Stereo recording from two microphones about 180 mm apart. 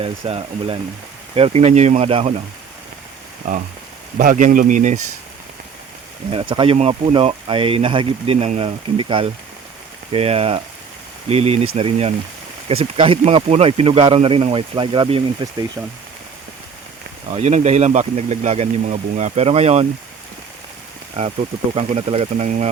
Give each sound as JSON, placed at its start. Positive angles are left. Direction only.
{"t": 0.0, "sound": "speech", "side_deg": -30}
{"t": 3.4, "sound": "speech", "side_deg": -40}
{"t": 6.3, "sound": "speech", "side_deg": -30}
{"t": 17.3, "sound": "speech", "side_deg": -40}
{"t": 21.8, "sound": "speech", "side_deg": -35}